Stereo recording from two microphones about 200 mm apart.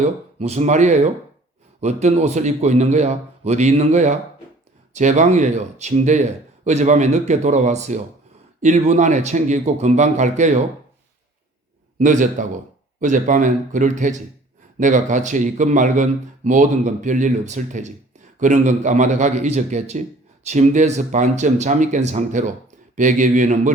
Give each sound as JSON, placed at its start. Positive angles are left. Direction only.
{"t": 0.0, "sound": "speech", "side_deg": -30}
{"t": 11.9, "sound": "speech", "side_deg": -40}